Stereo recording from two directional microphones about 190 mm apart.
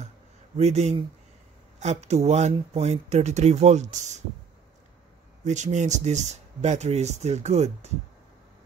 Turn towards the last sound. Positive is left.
turn(degrees=-35)  # may be behind; listen again after turning